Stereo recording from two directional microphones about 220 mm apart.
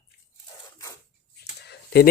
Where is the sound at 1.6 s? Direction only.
50° left (ahead or behind).